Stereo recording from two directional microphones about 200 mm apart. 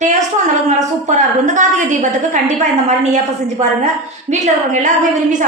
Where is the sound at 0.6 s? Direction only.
40° right (ahead or behind).